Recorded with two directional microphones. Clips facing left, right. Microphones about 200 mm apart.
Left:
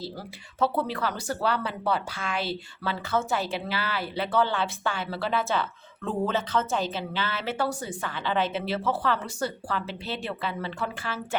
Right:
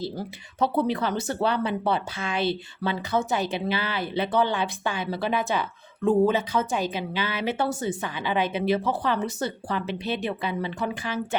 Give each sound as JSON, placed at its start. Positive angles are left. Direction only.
{"t": 0.0, "sound": "speech", "side_deg": -20}